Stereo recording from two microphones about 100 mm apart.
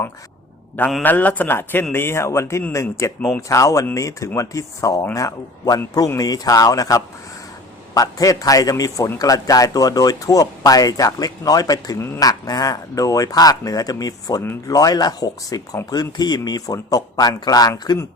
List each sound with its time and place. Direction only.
1.0 s a man's voice: 15° left (ahead or behind); by 11.9 s 40° left (ahead or behind)
11.9 s speech: 25° left (ahead or behind)
12.2 s a man's voice: 40° left (ahead or behind)